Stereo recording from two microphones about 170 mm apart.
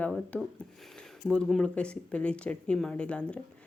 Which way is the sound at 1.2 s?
5° left (ahead or behind).